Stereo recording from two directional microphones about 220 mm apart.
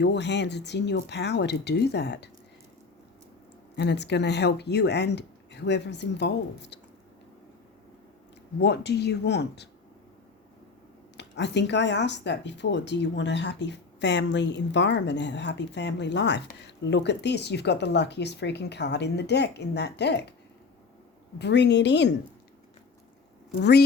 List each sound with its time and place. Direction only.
0.0 s speech: 50° left (ahead or behind)
3.8 s speech: 50° left (ahead or behind)
8.6 s speech: 50° left (ahead or behind)
11.2 s speech: 50° left (ahead or behind)
21.3 s speech: 50° left (ahead or behind)
23.6 s speech: 50° left (ahead or behind)